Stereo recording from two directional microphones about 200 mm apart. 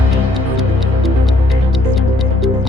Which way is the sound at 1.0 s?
Centre (ahead or behind).